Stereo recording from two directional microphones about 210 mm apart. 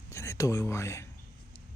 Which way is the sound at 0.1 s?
15° left (ahead or behind).